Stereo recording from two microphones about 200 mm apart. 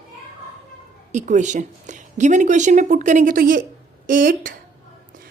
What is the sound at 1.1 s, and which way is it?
Speech, 35° right (ahead or behind).